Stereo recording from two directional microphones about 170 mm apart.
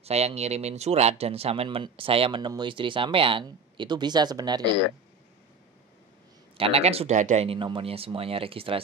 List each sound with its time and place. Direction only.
0.0 s speech: 40° right (ahead or behind); by 4.6 s 25° right (ahead or behind)
6.5 s speech: 35° right (ahead or behind)